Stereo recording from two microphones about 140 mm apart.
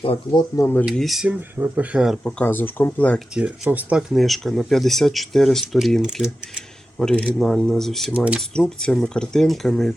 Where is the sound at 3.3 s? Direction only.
10° right (ahead or behind).